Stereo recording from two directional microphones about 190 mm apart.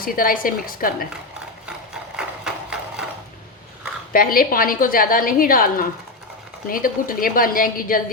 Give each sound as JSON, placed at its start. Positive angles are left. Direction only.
{"t": 0.0, "sound": "a woman's voice", "side_deg": 50}
{"t": 1.6, "sound": "a sound", "side_deg": -5}
{"t": 4.1, "sound": "a woman's voice", "side_deg": 50}